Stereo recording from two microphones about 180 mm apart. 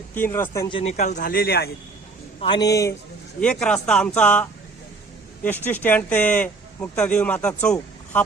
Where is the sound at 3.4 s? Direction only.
5° left (ahead or behind).